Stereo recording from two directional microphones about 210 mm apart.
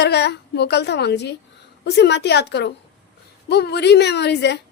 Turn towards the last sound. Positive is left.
turn(degrees=55)  # may be behind; listen again after turning